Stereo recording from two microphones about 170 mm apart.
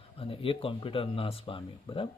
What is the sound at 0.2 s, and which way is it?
A man's voice, 35° left (ahead or behind).